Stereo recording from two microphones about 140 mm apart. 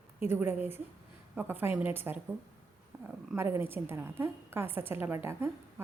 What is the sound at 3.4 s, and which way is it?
A woman's voice, 15° right (ahead or behind).